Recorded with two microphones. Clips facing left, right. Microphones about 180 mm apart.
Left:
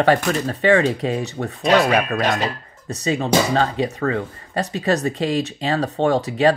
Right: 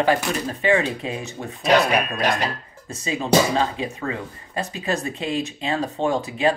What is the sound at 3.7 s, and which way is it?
Speech, 40° left (ahead or behind).